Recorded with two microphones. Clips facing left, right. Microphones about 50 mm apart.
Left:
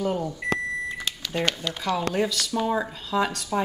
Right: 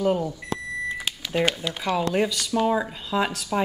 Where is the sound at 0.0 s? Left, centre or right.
Centre.